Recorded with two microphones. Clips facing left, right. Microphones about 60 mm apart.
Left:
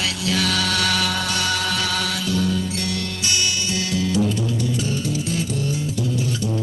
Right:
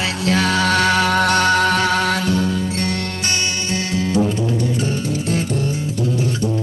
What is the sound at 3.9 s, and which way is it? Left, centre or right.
Music, right.